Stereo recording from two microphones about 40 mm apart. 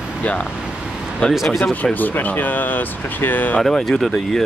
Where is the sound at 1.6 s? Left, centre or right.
Left.